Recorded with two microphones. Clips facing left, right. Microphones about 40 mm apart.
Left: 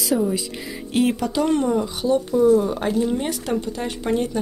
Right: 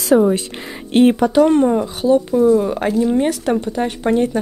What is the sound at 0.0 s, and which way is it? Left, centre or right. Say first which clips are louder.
Speech: right 8 dB; right.